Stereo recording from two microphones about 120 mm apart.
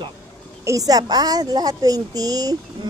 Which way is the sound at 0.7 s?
30° right (ahead or behind).